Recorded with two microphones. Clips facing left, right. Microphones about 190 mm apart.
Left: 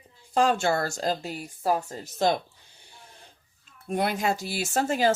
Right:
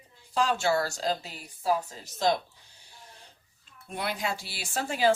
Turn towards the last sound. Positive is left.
turn(degrees=45)  # may be behind; listen again after turning